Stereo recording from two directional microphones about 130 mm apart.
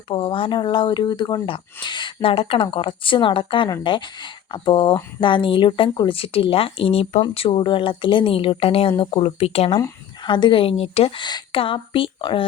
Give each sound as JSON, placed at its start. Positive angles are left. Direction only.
{"t": 0.1, "sound": "speech", "side_deg": 45}
{"t": 10.2, "sound": "speech", "side_deg": 35}